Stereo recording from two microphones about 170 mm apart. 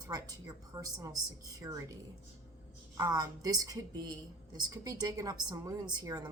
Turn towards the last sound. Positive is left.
turn(degrees=-25)  # may be behind; listen again after turning